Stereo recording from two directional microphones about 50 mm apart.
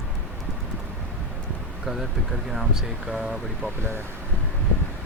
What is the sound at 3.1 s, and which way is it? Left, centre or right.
Speech, centre.